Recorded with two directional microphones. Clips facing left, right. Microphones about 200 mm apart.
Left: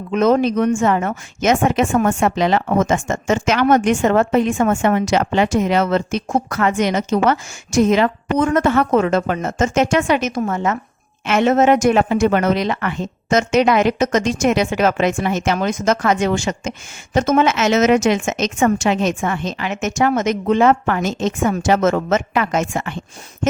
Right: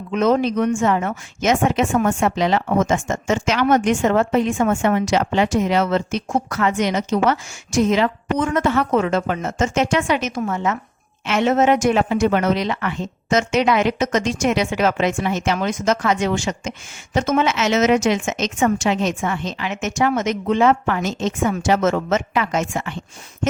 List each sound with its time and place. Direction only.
0.1 s a woman's voice: 45° left (ahead or behind)